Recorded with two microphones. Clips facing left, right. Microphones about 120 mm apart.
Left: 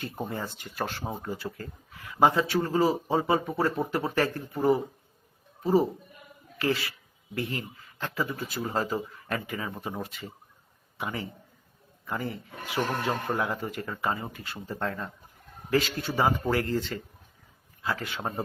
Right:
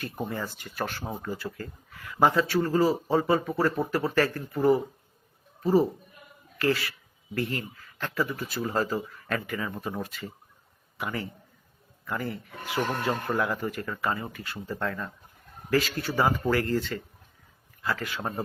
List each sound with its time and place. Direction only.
0.0 s speech: 25° left (ahead or behind)
6.6 s a man's voice: 20° left (ahead or behind)